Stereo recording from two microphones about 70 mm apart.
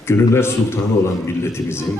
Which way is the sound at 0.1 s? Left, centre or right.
Left.